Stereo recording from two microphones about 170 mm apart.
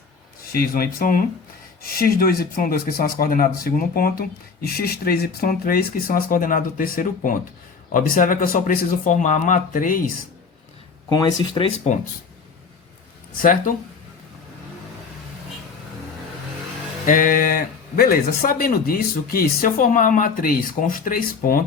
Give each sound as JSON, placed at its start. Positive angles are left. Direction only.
{"t": 0.5, "sound": "speech", "side_deg": 60}
{"t": 11.1, "sound": "speech", "side_deg": 25}
{"t": 17.1, "sound": "speech", "side_deg": 55}